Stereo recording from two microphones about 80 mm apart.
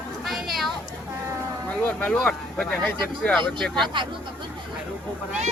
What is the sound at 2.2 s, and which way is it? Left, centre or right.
Speech, centre.